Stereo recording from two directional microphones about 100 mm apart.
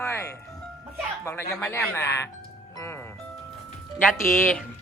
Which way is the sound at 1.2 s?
30° left (ahead or behind).